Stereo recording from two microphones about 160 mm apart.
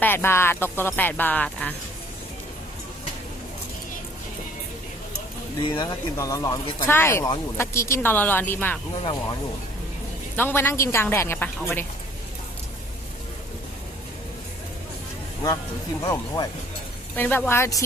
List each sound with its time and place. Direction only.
0.0 s speech: 15° left (ahead or behind)
5.5 s speech: 30° left (ahead or behind); by 8.8 s 10° left (ahead or behind)
10.3 s speech: 15° left (ahead or behind)
16.0 s speech: 20° left (ahead or behind)
17.2 s speech: 10° left (ahead or behind)